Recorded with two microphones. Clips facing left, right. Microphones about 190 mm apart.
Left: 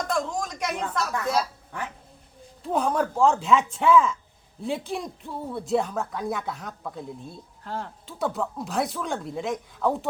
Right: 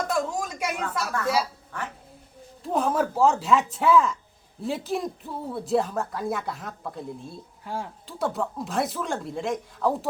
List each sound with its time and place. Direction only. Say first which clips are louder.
0.1 s a sound: right 1 dB; 5° right (ahead or behind)
1.7 s speech: even; 15° left (ahead or behind)
2.7 s speech: even; centre (ahead or behind)